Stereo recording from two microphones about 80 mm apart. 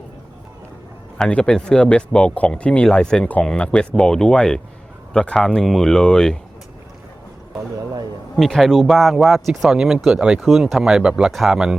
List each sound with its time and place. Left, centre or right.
1.2 s speech: centre
8.4 s speech: centre